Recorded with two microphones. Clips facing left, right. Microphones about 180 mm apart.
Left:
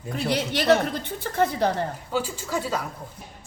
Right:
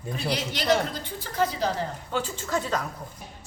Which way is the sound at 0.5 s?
60° left (ahead or behind).